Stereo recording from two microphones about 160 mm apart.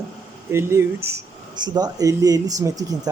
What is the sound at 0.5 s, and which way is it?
Speech, 15° right (ahead or behind).